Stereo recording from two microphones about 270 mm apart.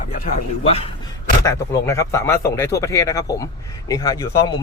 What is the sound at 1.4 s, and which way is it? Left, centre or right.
Speech, centre.